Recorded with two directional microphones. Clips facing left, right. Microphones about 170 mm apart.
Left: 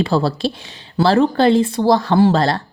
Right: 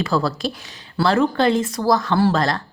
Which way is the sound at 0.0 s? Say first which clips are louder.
Left 4 dB; 30° left (ahead or behind).